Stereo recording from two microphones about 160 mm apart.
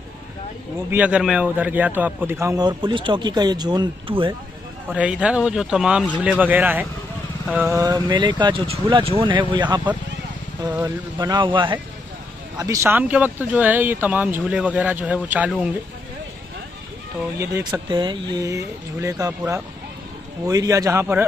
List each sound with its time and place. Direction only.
0.8 s a man's voice: 10° right (ahead or behind); by 4.4 s 30° right (ahead or behind)
4.9 s speech: 5° right (ahead or behind)
7.7 s a man's voice: 25° right (ahead or behind)
12.5 s speech: 20° right (ahead or behind)
17.4 s speech: 20° right (ahead or behind)
17.8 s a man's voice: 30° right (ahead or behind)